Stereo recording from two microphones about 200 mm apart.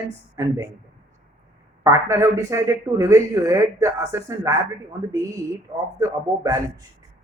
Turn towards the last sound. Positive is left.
turn(degrees=-15)  # may be behind; listen again after turning